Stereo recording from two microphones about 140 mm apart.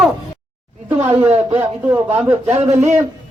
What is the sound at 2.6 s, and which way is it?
Speech, 50° right (ahead or behind).